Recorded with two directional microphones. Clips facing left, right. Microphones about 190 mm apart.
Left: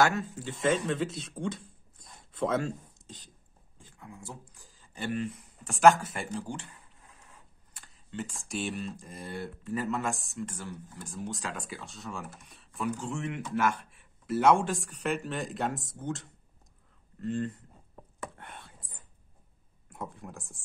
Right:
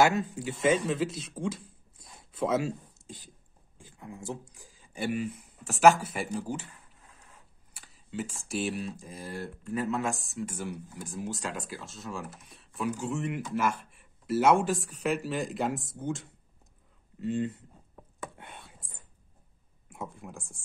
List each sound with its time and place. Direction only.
0.0 s speech: 15° right (ahead or behind)
0.6 s speech: 5° right (ahead or behind)
3.7 s a sound: 15° right (ahead or behind)
4.5 s speech: 10° right (ahead or behind)
7.7 s speech: 5° right (ahead or behind)
18.6 s whispering: centre (ahead or behind)
19.9 s speech: centre (ahead or behind)